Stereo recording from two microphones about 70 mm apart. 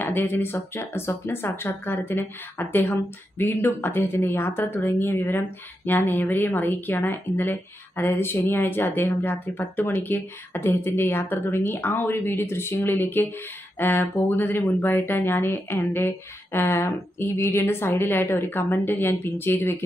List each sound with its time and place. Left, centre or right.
0.0 s a woman's voice: left